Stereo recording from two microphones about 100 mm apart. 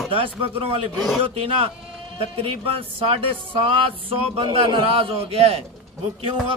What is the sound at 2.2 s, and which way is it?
Speech, 70° right (ahead or behind).